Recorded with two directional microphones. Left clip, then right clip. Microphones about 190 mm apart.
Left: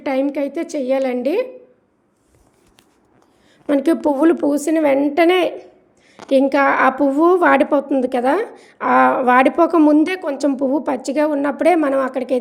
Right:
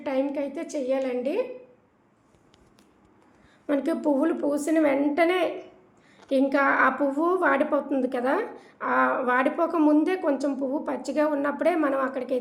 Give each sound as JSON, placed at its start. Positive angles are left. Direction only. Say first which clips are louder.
{"t": 0.0, "sound": "a woman's voice", "louder": "left 8 dB", "side_deg": 40}
{"t": 3.7, "sound": "a woman's voice", "louder": "left 8 dB", "side_deg": 40}